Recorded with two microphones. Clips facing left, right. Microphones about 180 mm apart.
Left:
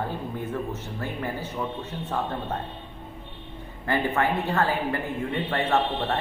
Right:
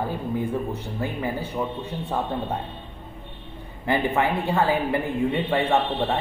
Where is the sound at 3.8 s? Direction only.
15° right (ahead or behind).